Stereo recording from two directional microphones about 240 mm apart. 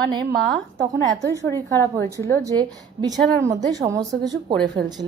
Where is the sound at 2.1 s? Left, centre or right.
Centre.